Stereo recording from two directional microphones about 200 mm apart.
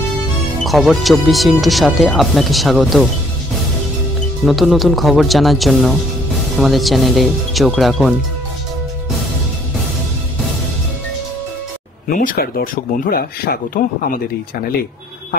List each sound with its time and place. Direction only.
0.7 s speech: centre (ahead or behind)
4.5 s speech: centre (ahead or behind)
12.1 s speech: 45° left (ahead or behind)